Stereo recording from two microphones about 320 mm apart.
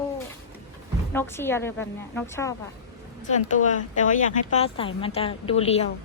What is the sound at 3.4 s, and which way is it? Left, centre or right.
A woman's voice, left.